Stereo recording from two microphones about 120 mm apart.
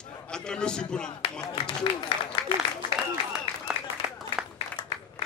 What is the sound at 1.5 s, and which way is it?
Speech, 50° left (ahead or behind).